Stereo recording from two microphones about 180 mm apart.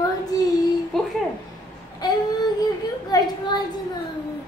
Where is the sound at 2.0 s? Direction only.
20° left (ahead or behind).